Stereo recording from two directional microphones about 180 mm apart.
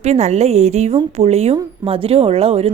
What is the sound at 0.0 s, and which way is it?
A woman's voice, 40° right (ahead or behind).